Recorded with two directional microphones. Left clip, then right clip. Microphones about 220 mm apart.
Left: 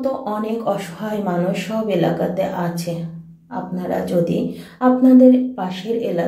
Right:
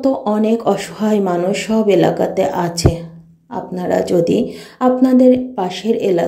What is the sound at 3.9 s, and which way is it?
Speech, 45° right (ahead or behind).